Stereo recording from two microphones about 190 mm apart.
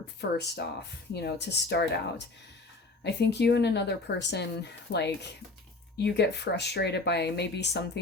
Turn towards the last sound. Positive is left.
turn(degrees=65)  # may be behind; listen again after turning